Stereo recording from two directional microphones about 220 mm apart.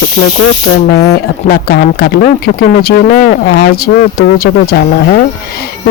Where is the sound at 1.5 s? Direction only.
45° left (ahead or behind).